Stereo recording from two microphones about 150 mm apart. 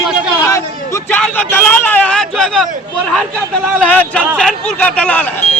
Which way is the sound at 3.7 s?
10° left (ahead or behind).